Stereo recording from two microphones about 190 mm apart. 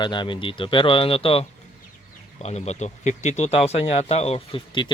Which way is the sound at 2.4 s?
35° left (ahead or behind).